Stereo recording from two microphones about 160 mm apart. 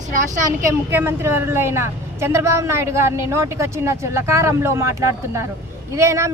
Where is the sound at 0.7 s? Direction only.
15° right (ahead or behind).